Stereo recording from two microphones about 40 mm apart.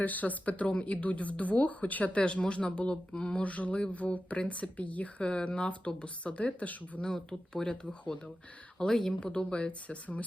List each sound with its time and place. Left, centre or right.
0.0 s speech: left
2.1 s speech: left
5.2 s speech: left
7.0 s speech: left